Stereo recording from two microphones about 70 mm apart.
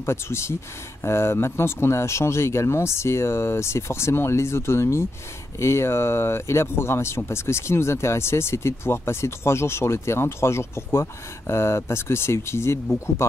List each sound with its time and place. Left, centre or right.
0.0 s speech: left